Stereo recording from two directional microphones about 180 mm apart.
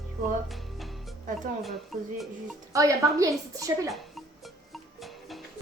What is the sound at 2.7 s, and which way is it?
A woman's voice, 20° right (ahead or behind).